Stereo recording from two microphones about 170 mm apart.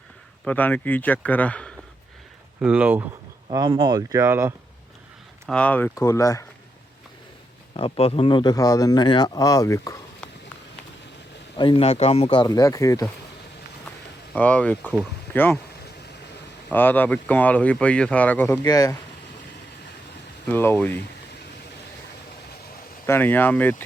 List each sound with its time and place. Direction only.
0.4 s speech: 10° left (ahead or behind)
2.6 s speech: 5° right (ahead or behind)
3.5 s speech: 25° right (ahead or behind)
5.5 s speech: 5° left (ahead or behind)
5.9 s a man's voice: 20° left (ahead or behind)
7.7 s a man's voice: 35° left (ahead or behind); by 10.0 s 20° left (ahead or behind)
11.5 s a man's voice: 30° left (ahead or behind)
14.3 s speech: 10° left (ahead or behind)
16.6 s speech: 10° left (ahead or behind)
18.6 s a man's voice: 20° left (ahead or behind)
20.5 s speech: 10° left (ahead or behind)
23.0 s speech: 10° left (ahead or behind)